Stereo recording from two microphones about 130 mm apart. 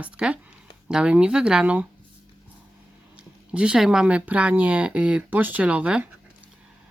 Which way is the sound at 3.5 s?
10° right (ahead or behind).